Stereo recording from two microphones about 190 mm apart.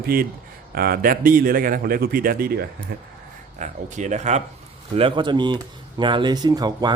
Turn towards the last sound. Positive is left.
turn(degrees=-20)  # may be behind; listen again after turning